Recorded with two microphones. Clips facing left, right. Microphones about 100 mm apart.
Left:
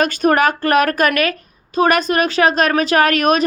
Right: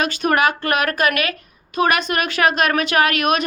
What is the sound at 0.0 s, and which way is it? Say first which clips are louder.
A woman's voice: left 3 dB; 40° left (ahead or behind).